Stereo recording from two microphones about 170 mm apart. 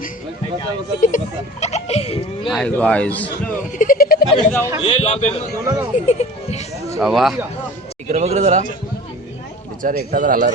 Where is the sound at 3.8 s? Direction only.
55° left (ahead or behind).